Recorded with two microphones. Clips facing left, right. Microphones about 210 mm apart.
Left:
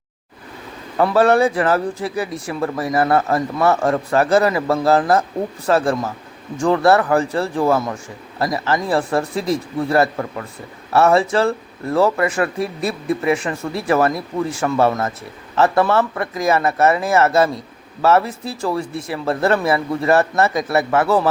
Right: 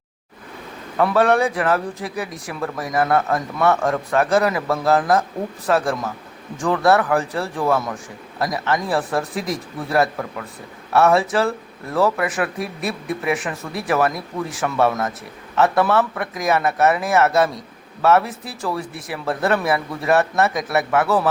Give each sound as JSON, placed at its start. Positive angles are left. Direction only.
{"t": 1.1, "sound": "speech", "side_deg": 0}
{"t": 9.4, "sound": "speech", "side_deg": 30}
{"t": 9.9, "sound": "speech", "side_deg": 0}